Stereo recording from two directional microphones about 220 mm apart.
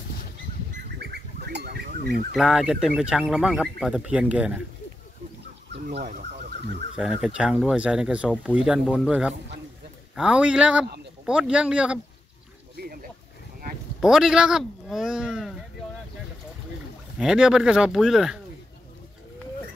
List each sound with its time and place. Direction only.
0.9 s bird: 50° right (ahead or behind)
2.3 s speech: centre (ahead or behind)
7.0 s speech: 5° right (ahead or behind)
14.0 s speech: 5° right (ahead or behind)
17.2 s speech: centre (ahead or behind)